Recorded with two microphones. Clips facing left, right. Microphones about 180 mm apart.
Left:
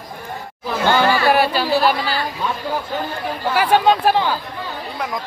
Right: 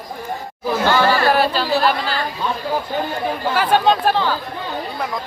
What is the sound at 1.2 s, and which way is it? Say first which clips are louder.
Speech: left 1 dB; 10° left (ahead or behind).